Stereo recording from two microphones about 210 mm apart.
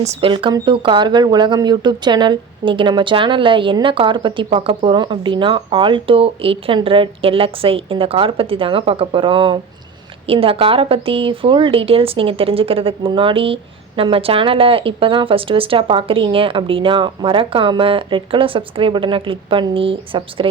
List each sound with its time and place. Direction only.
0.0 s speech: 30° right (ahead or behind)